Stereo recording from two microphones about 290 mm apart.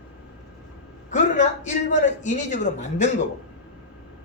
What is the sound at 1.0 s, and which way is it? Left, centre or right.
A man's voice, left.